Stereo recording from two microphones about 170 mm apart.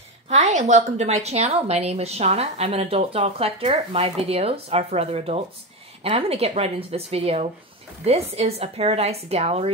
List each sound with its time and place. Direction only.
0.3 s a woman's voice: 45° right (ahead or behind)